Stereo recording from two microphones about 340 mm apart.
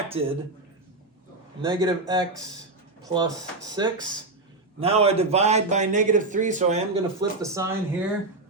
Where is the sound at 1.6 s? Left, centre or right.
Centre.